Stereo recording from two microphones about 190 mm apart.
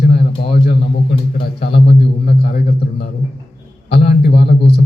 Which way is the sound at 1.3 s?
60° left (ahead or behind).